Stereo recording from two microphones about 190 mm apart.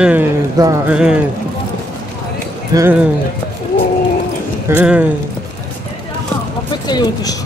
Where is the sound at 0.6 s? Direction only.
20° right (ahead or behind).